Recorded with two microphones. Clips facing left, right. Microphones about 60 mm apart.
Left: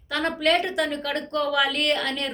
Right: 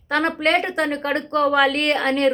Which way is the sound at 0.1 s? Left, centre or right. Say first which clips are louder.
Right 3 dB; right.